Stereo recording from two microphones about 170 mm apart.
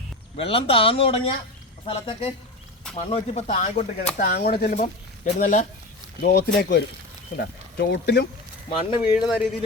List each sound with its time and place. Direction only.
0.3 s speech: 30° left (ahead or behind)
4.2 s speech: 65° left (ahead or behind)
4.8 s speech: 45° left (ahead or behind)
6.2 s speech: 75° left (ahead or behind)
8.7 s speech: 30° left (ahead or behind)
9.2 s speech: centre (ahead or behind)